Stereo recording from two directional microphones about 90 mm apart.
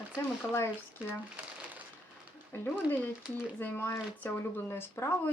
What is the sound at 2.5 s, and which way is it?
Speech, 25° left (ahead or behind).